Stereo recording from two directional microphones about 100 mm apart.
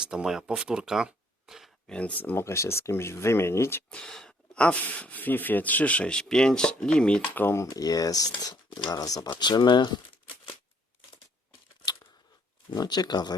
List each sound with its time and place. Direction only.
0.0 s speech: 5° right (ahead or behind)
1.9 s speech: 10° left (ahead or behind)
3.8 s speech: 5° left (ahead or behind)
7.4 s speech: 25° left (ahead or behind)
7.7 s speech: 35° left (ahead or behind)
9.4 s speech: 50° left (ahead or behind)
12.7 s speech: 40° left (ahead or behind)